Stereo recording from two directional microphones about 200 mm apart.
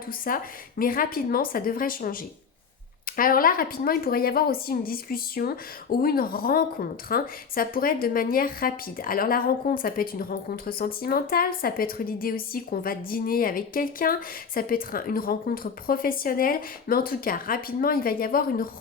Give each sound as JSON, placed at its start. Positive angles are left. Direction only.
{"t": 0.3, "sound": "speech", "side_deg": 45}